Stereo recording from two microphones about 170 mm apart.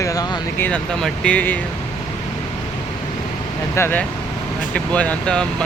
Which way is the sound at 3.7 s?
15° left (ahead or behind).